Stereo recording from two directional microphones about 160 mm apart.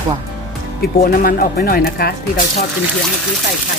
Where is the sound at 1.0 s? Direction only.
65° left (ahead or behind).